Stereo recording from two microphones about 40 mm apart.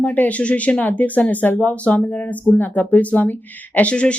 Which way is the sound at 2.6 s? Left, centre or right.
Left.